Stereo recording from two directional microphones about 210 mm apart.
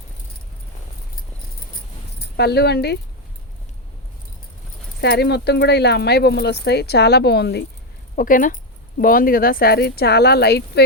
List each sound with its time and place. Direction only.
2.1 s speech: 50° left (ahead or behind)
4.9 s speech: 50° left (ahead or behind)
8.1 s speech: 40° left (ahead or behind)